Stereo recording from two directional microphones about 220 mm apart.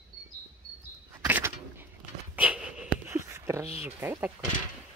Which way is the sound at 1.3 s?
10° right (ahead or behind).